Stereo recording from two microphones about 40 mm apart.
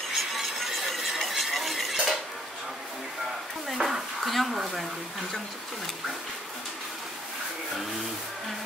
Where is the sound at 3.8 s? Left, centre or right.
Centre.